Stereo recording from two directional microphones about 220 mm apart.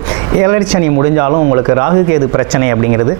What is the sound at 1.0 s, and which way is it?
Speech, 20° right (ahead or behind).